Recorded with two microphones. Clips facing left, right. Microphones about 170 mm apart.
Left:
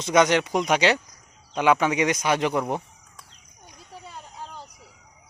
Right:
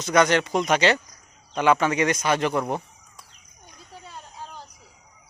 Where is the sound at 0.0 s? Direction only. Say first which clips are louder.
Even; 20° left (ahead or behind).